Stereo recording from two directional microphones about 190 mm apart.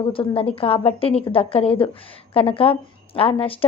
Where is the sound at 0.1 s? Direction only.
30° left (ahead or behind).